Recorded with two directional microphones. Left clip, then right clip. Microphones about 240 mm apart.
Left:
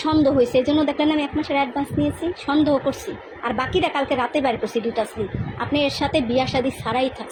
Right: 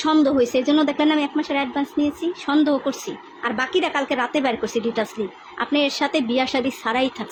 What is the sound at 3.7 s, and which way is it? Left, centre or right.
A woman's voice, centre.